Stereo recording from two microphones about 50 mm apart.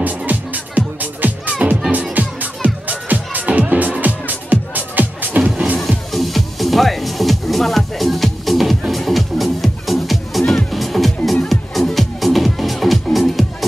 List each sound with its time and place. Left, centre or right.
0.3 s music: right
5.9 s music: centre